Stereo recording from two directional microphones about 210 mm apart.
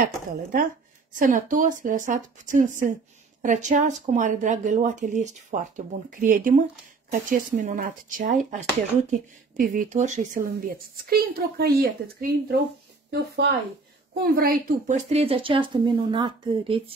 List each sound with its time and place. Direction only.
0.0 s a woman's voice: 40° right (ahead or behind)
9.6 s a woman's voice: 40° right (ahead or behind)